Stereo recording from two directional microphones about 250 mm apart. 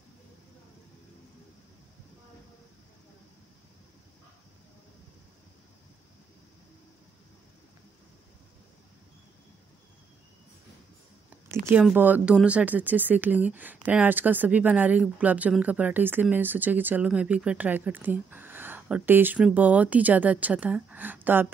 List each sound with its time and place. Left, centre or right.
11.5 s speech: centre